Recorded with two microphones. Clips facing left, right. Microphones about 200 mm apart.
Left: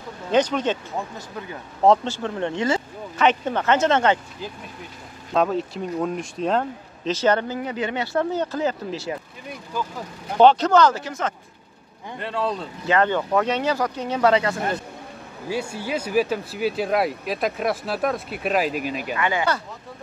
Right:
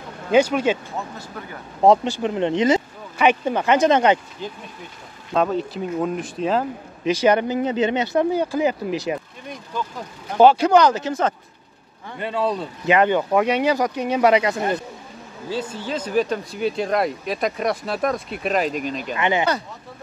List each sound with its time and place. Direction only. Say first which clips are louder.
0.3 s speech: right 3 dB; 10° right (ahead or behind)
1.8 s speech: right 2 dB; 15° right (ahead or behind)
5.3 s speech: right 1 dB; centre (ahead or behind); by 9.2 s 15° right (ahead or behind)
10.4 s speech: right 1 dB; 10° right (ahead or behind)
11.1 s speech: right 6 dB; 30° right (ahead or behind)
12.2 s speech: right 3 dB; 5° right (ahead or behind)
12.8 s speech: right 3 dB; 15° right (ahead or behind)
15.4 s speech: even; 10° left (ahead or behind)
19.1 s speech: right 3 dB; 20° right (ahead or behind)